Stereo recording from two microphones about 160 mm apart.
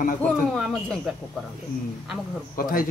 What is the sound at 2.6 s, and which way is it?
Speech, 60° left (ahead or behind).